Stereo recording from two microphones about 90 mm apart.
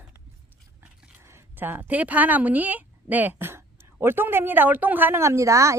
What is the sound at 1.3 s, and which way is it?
A woman's voice, 25° right (ahead or behind).